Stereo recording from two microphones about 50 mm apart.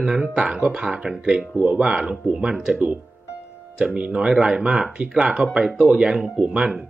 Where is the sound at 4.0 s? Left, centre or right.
Centre.